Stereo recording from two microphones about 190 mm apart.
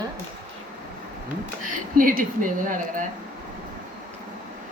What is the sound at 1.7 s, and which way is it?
A woman's voice, 45° right (ahead or behind).